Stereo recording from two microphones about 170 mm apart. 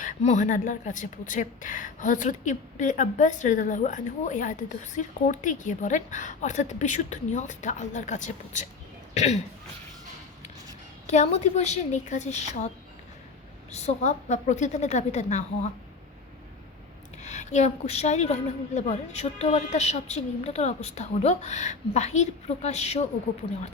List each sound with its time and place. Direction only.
0.0 s a woman's voice: 45° left (ahead or behind)
11.0 s speech: 40° left (ahead or behind)
17.2 s a woman's voice: 45° left (ahead or behind)